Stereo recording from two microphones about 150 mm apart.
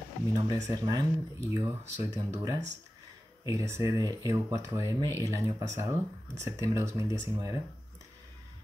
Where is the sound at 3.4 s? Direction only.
20° right (ahead or behind).